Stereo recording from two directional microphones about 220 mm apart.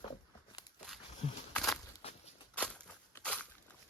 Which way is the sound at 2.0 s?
30° left (ahead or behind).